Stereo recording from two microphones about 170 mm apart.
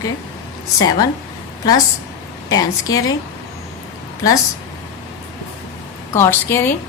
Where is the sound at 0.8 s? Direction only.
20° left (ahead or behind).